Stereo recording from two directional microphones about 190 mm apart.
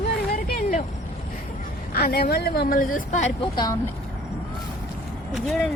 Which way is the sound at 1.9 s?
55° left (ahead or behind).